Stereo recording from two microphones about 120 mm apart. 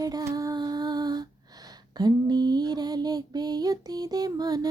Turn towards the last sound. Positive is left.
turn(degrees=-35)  # may be behind; listen again after turning